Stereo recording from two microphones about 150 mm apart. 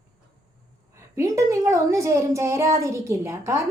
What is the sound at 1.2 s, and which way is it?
A woman's voice, 20° right (ahead or behind).